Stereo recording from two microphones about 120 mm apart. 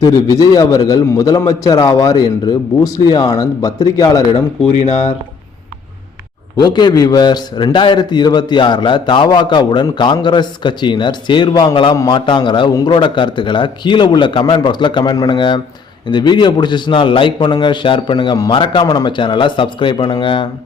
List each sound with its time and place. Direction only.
0.0 s a man's voice: 30° left (ahead or behind)
4.9 s speech: 60° left (ahead or behind)
6.6 s a man's voice: 35° left (ahead or behind)